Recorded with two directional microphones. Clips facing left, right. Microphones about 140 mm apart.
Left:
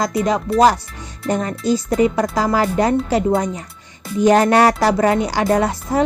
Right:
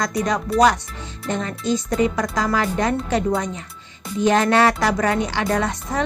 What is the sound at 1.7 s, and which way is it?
Speech, 30° left (ahead or behind).